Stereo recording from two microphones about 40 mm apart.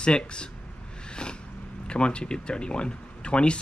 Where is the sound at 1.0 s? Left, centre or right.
Left.